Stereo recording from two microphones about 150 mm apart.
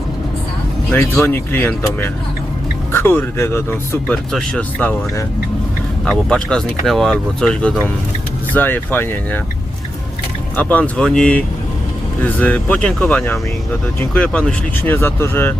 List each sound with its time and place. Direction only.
0.9 s speech: 15° left (ahead or behind)
4.1 s speech: 5° left (ahead or behind)
6.1 s speech: 5° left (ahead or behind)
8.5 s speech: 10° left (ahead or behind)
10.6 s speech: 10° left (ahead or behind)